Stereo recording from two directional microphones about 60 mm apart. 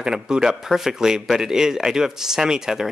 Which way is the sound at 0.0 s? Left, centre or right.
Centre.